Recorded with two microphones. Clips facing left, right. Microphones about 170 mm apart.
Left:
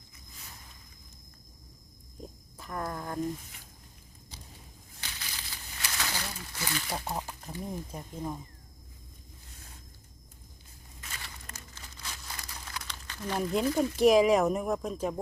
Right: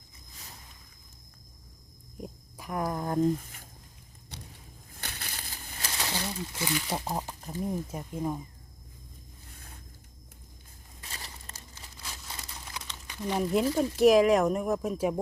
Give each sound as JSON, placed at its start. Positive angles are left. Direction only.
{"t": 2.2, "sound": "a sound", "side_deg": -15}
{"t": 3.0, "sound": "speech", "side_deg": -25}
{"t": 4.9, "sound": "crumpling", "side_deg": -55}
{"t": 6.0, "sound": "speech", "side_deg": -25}
{"t": 11.1, "sound": "a sound", "side_deg": -35}
{"t": 12.7, "sound": "crumpling", "side_deg": -15}
{"t": 13.5, "sound": "speech", "side_deg": -5}